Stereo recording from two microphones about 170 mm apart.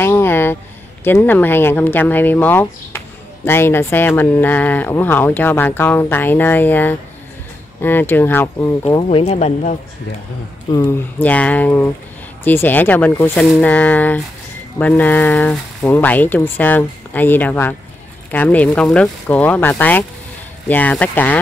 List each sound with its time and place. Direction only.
0.0 s a sound: 15° left (ahead or behind)
1.0 s speech: 10° left (ahead or behind)
9.1 s speech: 40° left (ahead or behind)
10.7 s speech: 15° left (ahead or behind)